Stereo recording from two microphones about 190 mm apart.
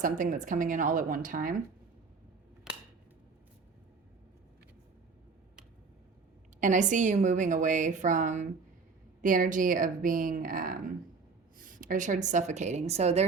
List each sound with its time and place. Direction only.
0.0 s speech: 45° right (ahead or behind)
2.7 s a sound: 5° right (ahead or behind)
6.6 s a woman's voice: 40° right (ahead or behind)